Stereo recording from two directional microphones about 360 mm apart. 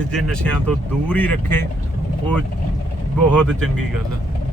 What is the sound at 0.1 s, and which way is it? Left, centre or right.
Speech, centre.